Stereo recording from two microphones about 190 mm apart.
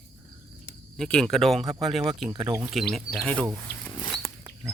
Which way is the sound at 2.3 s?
20° right (ahead or behind).